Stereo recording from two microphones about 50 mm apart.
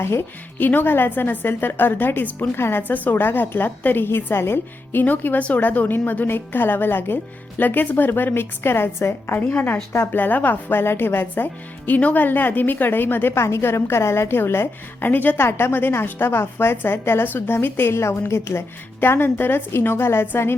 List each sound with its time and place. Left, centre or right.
0.0 s a woman's voice: left
0.6 s a woman's voice: left
2.6 s a woman's voice: left
2.8 s a woman's voice: left
5.0 s a woman's voice: left
10.1 s a woman's voice: left
11.9 s a woman's voice: left
13.6 s a woman's voice: left
15.1 s a woman's voice: left
15.4 s a woman's voice: left
18.9 s a woman's voice: left